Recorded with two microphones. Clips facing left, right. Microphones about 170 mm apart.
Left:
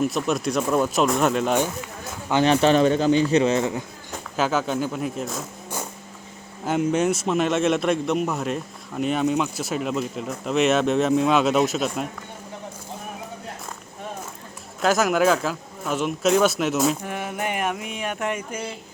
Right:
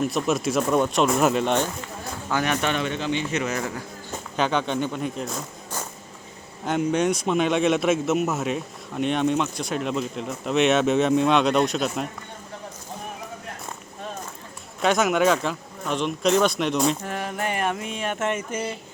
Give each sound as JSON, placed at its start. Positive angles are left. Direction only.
{"t": 0.0, "sound": "a man's voice", "side_deg": 0}
{"t": 2.3, "sound": "a man's voice", "side_deg": 30}
{"t": 4.4, "sound": "a man's voice", "side_deg": 5}
{"t": 6.7, "sound": "a man's voice", "side_deg": 5}
{"t": 14.8, "sound": "a man's voice", "side_deg": 0}